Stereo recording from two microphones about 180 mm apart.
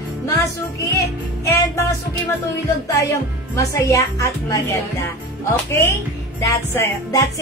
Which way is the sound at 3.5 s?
15° left (ahead or behind).